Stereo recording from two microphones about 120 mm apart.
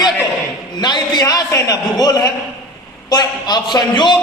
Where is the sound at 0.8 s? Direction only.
35° left (ahead or behind).